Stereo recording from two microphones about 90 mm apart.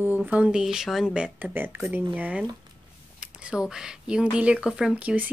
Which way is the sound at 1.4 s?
20° right (ahead or behind).